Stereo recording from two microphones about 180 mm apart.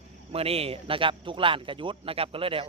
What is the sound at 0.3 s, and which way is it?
A man's voice, 35° right (ahead or behind).